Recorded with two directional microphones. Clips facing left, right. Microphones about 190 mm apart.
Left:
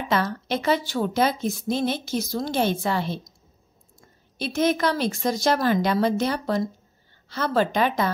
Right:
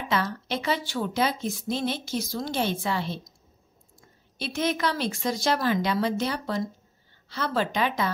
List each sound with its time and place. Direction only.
0.1 s a woman's voice: 45° left (ahead or behind)
4.4 s a woman's voice: 45° left (ahead or behind)